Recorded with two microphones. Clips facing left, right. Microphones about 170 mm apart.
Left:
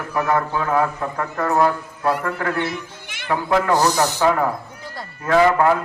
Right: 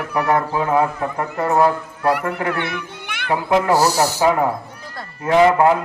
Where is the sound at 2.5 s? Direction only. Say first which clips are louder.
Even; 65° right (ahead or behind).